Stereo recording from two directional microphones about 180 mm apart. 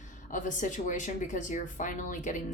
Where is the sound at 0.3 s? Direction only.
45° left (ahead or behind).